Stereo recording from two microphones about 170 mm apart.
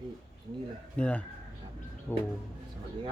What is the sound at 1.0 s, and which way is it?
Speech, 10° left (ahead or behind).